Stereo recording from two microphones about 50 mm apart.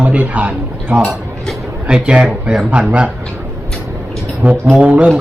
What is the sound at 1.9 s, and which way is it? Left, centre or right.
Speech, right.